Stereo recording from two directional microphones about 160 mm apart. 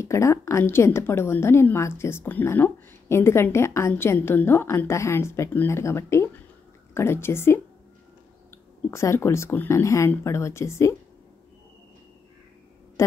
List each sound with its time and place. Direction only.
0.0 s a woman's voice: 15° left (ahead or behind)